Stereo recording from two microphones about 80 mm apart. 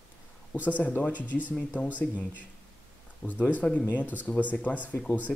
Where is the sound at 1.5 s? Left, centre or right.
Centre.